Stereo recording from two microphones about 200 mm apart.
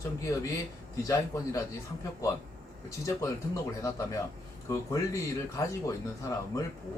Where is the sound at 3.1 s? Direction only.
15° left (ahead or behind).